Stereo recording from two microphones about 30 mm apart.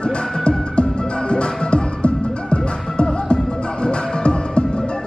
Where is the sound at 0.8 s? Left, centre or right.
Left.